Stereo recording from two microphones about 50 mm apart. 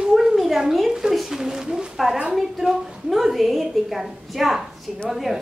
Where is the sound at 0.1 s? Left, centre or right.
Centre.